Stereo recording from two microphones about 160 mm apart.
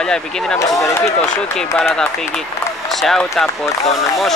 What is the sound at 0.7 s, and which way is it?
Speech, 15° left (ahead or behind).